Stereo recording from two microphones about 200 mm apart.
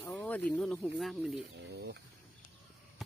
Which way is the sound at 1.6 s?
60° right (ahead or behind).